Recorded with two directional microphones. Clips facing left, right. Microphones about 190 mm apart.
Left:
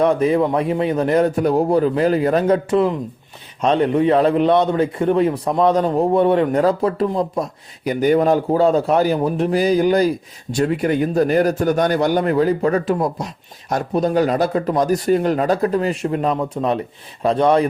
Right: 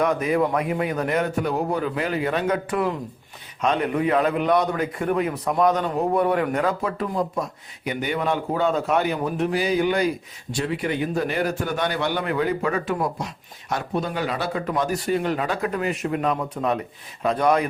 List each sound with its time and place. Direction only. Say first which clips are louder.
0.0 s a man's voice: left 5 dB; 30° left (ahead or behind)
2.6 s a man's voice: left 7 dB; 20° left (ahead or behind)